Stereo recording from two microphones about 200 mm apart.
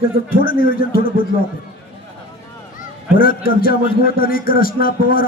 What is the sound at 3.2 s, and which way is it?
Speech, 45° left (ahead or behind).